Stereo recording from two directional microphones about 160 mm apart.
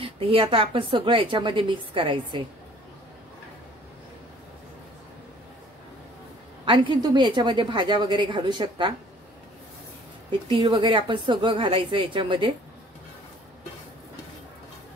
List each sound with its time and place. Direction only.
0.0 s a woman's voice: 35° right (ahead or behind)
6.6 s a woman's voice: 30° right (ahead or behind)
10.5 s a woman's voice: 30° right (ahead or behind)